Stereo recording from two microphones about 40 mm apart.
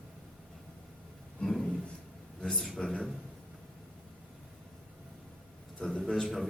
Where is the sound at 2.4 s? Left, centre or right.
Centre.